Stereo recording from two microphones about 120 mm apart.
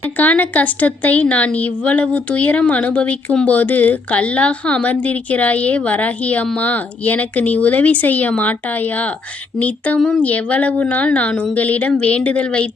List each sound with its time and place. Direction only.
0.0 s speech: 15° left (ahead or behind)